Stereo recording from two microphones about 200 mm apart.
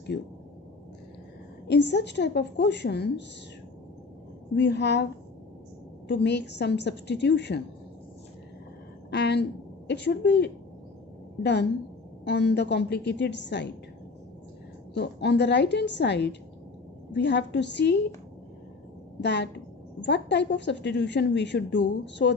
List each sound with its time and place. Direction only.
1.7 s a woman's voice: 60° left (ahead or behind)
4.6 s a woman's voice: 60° left (ahead or behind)
6.0 s a woman's voice: 60° left (ahead or behind)
9.1 s a woman's voice: 60° left (ahead or behind)
12.3 s a woman's voice: 60° left (ahead or behind)
15.0 s a woman's voice: 60° left (ahead or behind)
19.2 s a woman's voice: 60° left (ahead or behind)